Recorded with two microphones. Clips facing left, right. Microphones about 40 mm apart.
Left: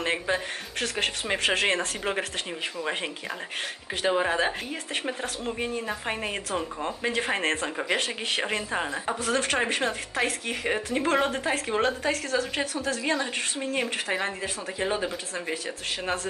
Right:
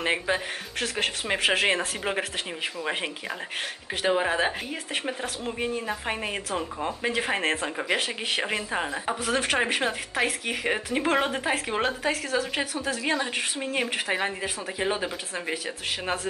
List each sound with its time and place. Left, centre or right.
0.0 s speech: centre